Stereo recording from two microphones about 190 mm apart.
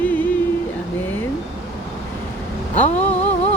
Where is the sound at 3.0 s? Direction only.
10° left (ahead or behind).